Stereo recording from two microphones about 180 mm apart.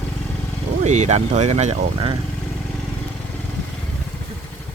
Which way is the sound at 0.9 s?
40° right (ahead or behind).